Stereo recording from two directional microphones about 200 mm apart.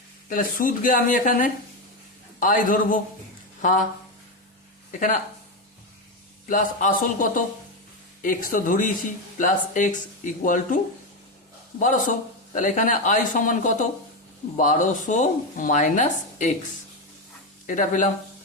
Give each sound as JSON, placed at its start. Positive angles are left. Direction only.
{"t": 0.3, "sound": "speech", "side_deg": 45}
{"t": 4.9, "sound": "speech", "side_deg": 40}
{"t": 6.5, "sound": "speech", "side_deg": 40}
{"t": 11.8, "sound": "speech", "side_deg": 40}
{"t": 17.7, "sound": "speech", "side_deg": 40}